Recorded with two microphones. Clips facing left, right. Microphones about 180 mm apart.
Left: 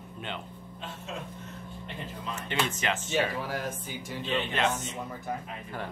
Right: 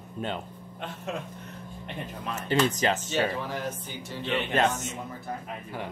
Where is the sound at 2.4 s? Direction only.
35° right (ahead or behind).